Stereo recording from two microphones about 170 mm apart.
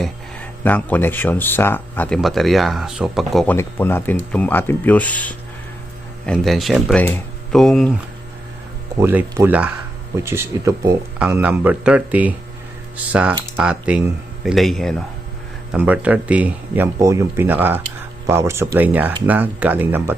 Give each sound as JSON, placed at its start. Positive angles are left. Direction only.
{"t": 0.0, "sound": "speech", "side_deg": 10}
{"t": 3.5, "sound": "speech", "side_deg": 15}
{"t": 9.0, "sound": "speech", "side_deg": -15}
{"t": 15.7, "sound": "speech", "side_deg": -10}